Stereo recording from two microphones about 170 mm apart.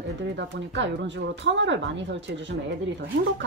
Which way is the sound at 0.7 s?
90° right.